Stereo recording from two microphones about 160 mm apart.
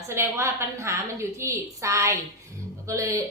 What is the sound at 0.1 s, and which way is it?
A woman's voice, 15° right (ahead or behind).